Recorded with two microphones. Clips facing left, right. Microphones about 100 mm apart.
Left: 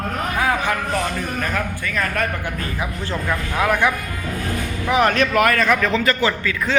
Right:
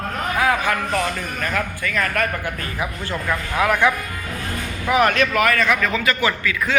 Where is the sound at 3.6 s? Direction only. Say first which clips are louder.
Right 1 dB; 15° left (ahead or behind).